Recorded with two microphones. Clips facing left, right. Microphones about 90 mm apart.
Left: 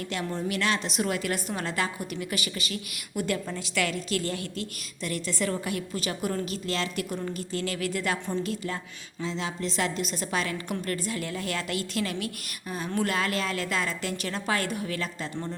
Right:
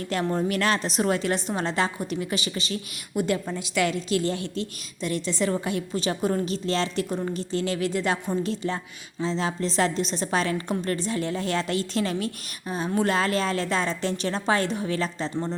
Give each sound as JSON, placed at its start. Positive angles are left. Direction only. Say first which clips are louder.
{"t": 0.1, "sound": "a woman's voice", "louder": "right 7 dB", "side_deg": -45}
{"t": 13.1, "sound": "a woman's voice", "louder": "right 4 dB", "side_deg": -30}